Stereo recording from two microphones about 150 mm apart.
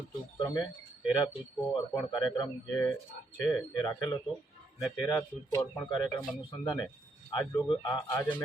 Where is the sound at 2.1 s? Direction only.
30° left (ahead or behind).